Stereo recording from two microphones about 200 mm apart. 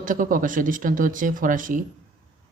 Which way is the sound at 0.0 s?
40° right (ahead or behind).